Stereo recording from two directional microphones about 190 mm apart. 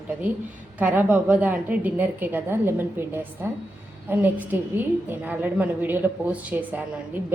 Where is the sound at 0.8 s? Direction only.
10° right (ahead or behind).